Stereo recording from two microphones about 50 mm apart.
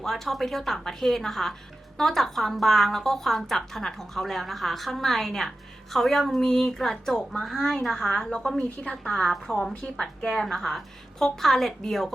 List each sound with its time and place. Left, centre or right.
0.0 s a woman's voice: centre
8.8 s speech: centre
9.3 s a woman's voice: centre